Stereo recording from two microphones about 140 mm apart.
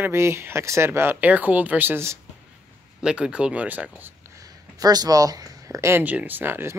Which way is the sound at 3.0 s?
5° right (ahead or behind).